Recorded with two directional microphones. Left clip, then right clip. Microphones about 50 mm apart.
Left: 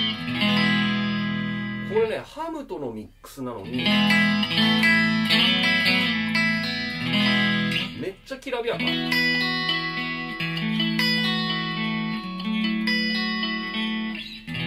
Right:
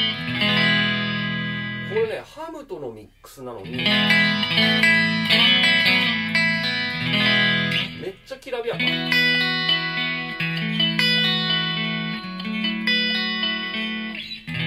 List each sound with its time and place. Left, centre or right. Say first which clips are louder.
0.0 s music: right 3 dB; right
3.7 s music: right 3 dB; right
8.5 s speech: even; centre
8.7 s music: right 6 dB; right